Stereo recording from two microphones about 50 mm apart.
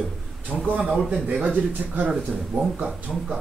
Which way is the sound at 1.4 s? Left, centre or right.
Right.